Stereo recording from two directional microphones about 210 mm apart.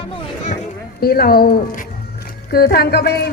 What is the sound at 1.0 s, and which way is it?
Speech, 45° left (ahead or behind).